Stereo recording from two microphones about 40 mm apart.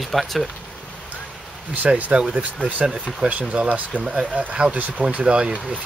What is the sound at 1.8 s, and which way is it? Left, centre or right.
Speech, centre.